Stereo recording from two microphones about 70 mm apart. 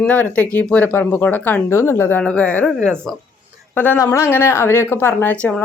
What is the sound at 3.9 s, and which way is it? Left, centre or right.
Speech, left.